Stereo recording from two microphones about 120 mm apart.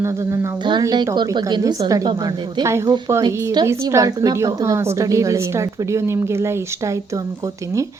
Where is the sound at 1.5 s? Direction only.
35° right (ahead or behind).